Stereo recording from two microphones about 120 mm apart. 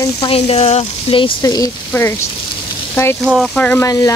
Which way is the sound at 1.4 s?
30° left (ahead or behind).